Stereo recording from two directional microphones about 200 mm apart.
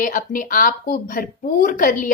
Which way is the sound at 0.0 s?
45° left (ahead or behind).